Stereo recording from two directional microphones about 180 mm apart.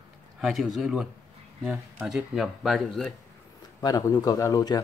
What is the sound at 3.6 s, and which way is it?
A man's voice, 20° left (ahead or behind).